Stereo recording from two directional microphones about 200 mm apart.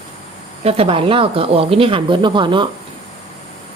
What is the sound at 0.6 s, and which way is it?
Speech, 30° right (ahead or behind).